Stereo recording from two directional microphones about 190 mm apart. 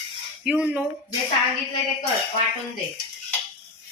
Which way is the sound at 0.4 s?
5° right (ahead or behind).